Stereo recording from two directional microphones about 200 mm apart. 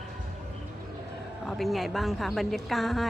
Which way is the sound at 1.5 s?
Centre (ahead or behind).